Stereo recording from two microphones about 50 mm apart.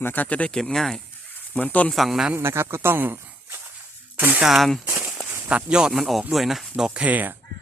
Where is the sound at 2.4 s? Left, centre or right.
Right.